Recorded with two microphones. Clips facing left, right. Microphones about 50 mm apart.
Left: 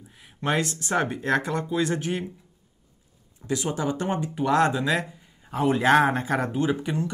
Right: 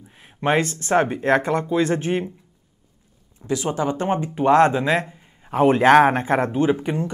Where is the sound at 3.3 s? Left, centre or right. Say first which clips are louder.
Right 4 dB; right.